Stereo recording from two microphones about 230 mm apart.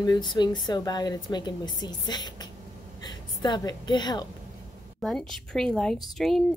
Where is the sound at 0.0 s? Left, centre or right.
Centre.